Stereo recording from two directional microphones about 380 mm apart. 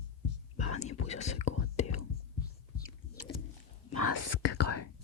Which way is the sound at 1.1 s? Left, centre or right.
Centre.